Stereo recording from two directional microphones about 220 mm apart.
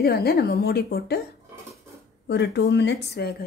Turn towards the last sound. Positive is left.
turn(degrees=45)  # may be behind; listen again after turning